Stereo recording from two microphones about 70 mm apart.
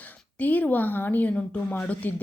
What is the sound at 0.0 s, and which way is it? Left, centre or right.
Speech, left.